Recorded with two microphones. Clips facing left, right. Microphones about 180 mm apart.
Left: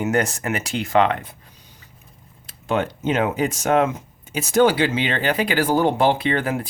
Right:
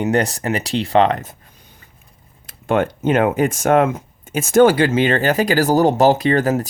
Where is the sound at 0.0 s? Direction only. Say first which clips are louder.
Right 3 dB; 35° right (ahead or behind).